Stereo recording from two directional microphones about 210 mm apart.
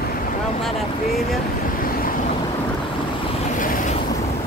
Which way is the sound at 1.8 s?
45° left (ahead or behind).